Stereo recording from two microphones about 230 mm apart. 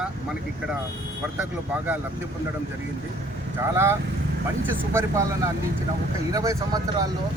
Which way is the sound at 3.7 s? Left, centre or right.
Centre.